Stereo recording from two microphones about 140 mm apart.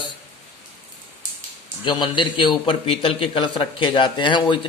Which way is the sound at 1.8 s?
35° left (ahead or behind).